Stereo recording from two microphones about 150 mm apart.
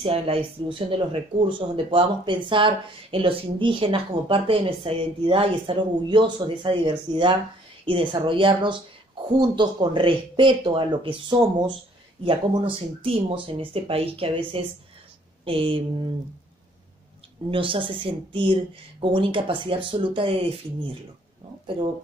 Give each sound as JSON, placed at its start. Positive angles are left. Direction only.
{"t": 0.0, "sound": "a woman's voice", "side_deg": -40}
{"t": 17.5, "sound": "a woman's voice", "side_deg": -35}